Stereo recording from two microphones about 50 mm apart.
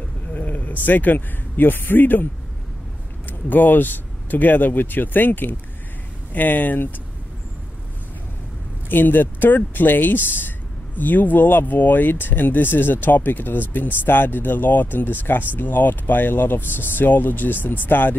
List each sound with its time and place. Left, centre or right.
0.3 s speech: left
3.3 s speech: left
8.8 s speech: left